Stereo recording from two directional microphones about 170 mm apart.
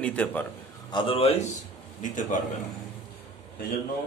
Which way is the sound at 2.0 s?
50° left (ahead or behind).